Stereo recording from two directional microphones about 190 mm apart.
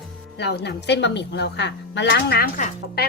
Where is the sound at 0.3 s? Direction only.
60° left (ahead or behind).